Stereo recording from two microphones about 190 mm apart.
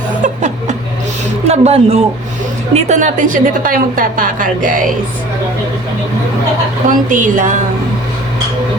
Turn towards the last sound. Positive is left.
turn(degrees=-40)  # may be behind; listen again after turning